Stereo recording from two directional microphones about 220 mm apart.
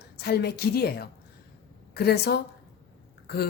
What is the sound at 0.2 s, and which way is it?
A woman's voice, 45° left (ahead or behind).